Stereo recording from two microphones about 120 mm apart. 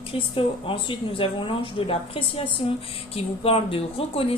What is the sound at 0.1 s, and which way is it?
Speech, 50° left (ahead or behind).